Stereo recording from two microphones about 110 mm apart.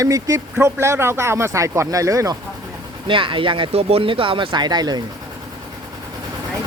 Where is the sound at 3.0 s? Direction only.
50° right (ahead or behind).